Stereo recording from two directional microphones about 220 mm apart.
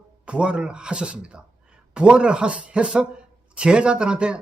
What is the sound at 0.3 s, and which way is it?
Speech, 5° right (ahead or behind).